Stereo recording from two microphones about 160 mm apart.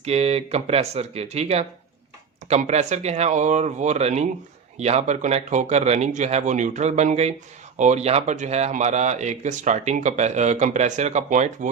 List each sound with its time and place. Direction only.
0.0 s speech: 40° right (ahead or behind)